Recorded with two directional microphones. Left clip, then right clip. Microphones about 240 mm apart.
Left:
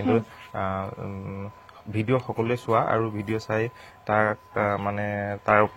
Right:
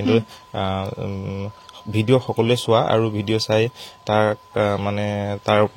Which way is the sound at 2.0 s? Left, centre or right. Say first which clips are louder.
Right 7 dB; right.